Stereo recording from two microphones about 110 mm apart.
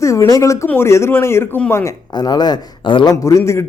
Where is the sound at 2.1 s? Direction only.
40° left (ahead or behind).